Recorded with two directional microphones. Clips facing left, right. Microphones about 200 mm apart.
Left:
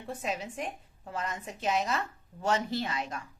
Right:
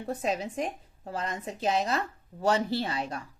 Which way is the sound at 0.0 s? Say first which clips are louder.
Right 5 dB; 40° right (ahead or behind).